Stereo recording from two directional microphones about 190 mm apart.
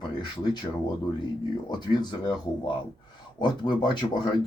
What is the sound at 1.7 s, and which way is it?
Speech, 25° left (ahead or behind).